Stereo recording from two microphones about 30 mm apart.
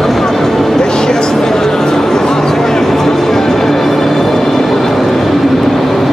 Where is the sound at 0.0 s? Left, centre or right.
Centre.